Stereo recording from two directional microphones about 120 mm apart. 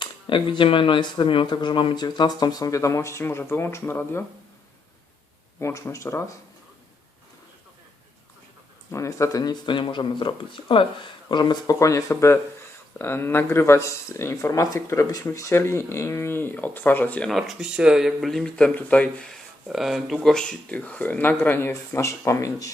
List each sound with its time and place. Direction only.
0.0 s speech: 40° left (ahead or behind); by 4.2 s 20° left (ahead or behind)
5.5 s speech: 20° left (ahead or behind)
8.9 s speech: 25° left (ahead or behind); by 19.4 s 10° left (ahead or behind)
19.6 s speech: centre (ahead or behind); by 22.7 s 30° left (ahead or behind)